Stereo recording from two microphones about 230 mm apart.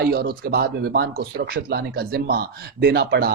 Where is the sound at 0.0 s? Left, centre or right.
Right.